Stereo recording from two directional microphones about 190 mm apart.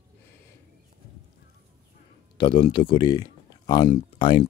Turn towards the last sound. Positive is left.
turn(degrees=25)  # may be behind; listen again after turning